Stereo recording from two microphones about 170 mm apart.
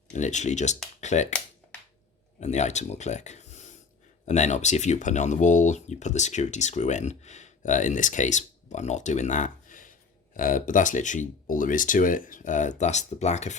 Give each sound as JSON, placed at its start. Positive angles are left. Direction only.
{"t": 0.1, "sound": "speech", "side_deg": 45}
{"t": 2.4, "sound": "speech", "side_deg": 40}